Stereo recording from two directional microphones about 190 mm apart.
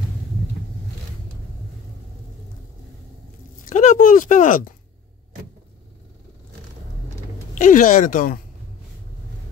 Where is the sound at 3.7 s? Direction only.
40° left (ahead or behind).